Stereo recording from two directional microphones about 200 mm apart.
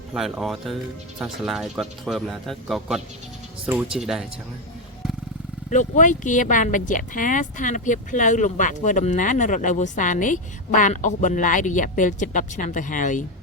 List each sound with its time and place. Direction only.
0.1 s speech: centre (ahead or behind)
5.7 s speech: 40° left (ahead or behind)